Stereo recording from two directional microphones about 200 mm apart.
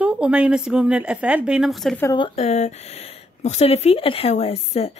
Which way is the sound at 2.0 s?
25° left (ahead or behind).